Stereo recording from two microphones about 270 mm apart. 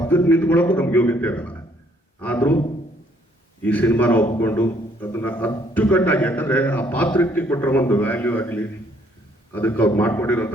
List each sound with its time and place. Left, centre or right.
0.0 s a man's voice: centre
3.6 s a man's voice: centre